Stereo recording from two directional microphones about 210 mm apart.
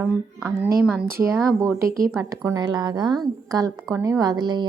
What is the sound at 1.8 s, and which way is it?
A woman's voice, 15° right (ahead or behind).